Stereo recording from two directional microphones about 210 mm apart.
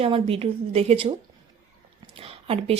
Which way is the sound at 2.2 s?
30° right (ahead or behind).